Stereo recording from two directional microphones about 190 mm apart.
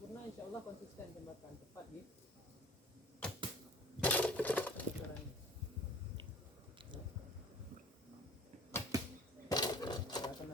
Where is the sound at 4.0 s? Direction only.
5° left (ahead or behind).